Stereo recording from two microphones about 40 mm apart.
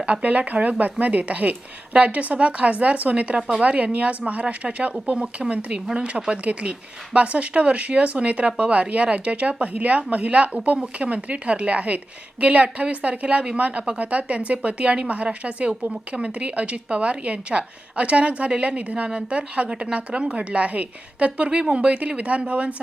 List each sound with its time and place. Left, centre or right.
0.0 s speech: right